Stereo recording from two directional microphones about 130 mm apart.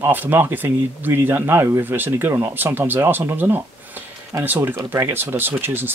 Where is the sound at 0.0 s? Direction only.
15° right (ahead or behind).